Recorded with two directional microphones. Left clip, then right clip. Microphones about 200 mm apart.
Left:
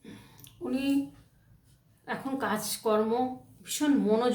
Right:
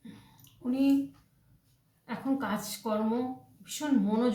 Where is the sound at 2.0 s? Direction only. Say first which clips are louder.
Left 1 dB; 40° left (ahead or behind).